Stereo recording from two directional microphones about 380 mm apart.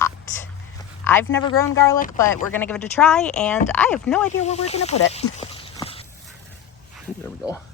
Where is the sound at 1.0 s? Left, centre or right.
Centre.